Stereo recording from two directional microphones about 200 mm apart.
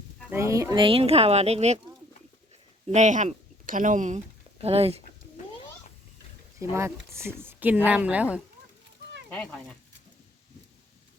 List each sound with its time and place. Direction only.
0.3 s speech: 15° right (ahead or behind); by 1.8 s 30° right (ahead or behind)
2.8 s speech: 35° right (ahead or behind)
6.6 s speech: 15° right (ahead or behind)
9.3 s speech: 5° left (ahead or behind)